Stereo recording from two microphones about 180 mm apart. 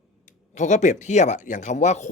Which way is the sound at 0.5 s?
40° left (ahead or behind).